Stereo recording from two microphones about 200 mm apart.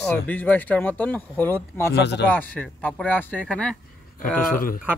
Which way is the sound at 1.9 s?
60° left (ahead or behind).